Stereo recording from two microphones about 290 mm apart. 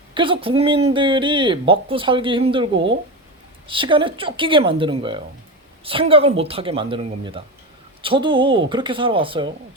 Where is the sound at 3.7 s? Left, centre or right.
Centre.